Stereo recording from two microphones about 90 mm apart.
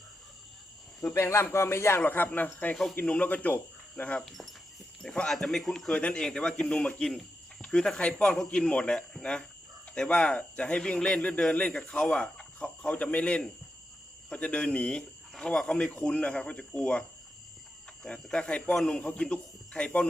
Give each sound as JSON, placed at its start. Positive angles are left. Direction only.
{"t": 1.1, "sound": "speech", "side_deg": 30}
{"t": 18.0, "sound": "speech", "side_deg": 10}